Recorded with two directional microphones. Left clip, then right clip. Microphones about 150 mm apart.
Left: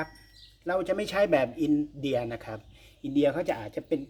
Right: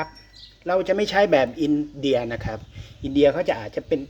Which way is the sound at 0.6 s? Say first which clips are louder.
Right 7 dB; centre (ahead or behind).